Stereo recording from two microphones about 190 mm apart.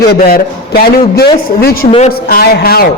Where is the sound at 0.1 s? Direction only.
50° left (ahead or behind).